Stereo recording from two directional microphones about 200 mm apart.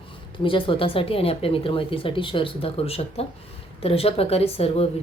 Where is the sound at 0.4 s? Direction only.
25° left (ahead or behind).